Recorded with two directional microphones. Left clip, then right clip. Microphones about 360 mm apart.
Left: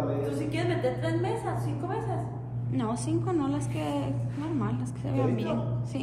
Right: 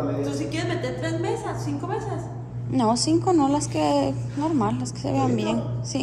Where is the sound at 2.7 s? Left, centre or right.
Centre.